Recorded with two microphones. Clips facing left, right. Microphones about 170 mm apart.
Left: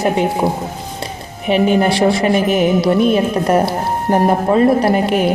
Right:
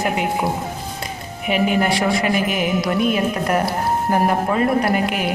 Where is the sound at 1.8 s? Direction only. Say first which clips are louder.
Left 5 dB; 30° left (ahead or behind).